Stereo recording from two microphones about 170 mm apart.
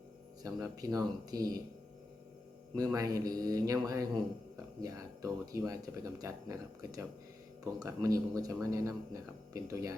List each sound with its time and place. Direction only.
0.4 s a man's voice: 20° right (ahead or behind)
2.7 s a man's voice: 20° right (ahead or behind)